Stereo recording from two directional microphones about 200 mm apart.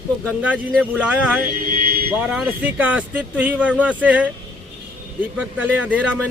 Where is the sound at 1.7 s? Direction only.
45° right (ahead or behind).